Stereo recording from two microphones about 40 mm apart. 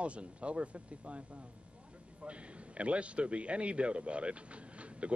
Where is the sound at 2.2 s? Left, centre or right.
Right.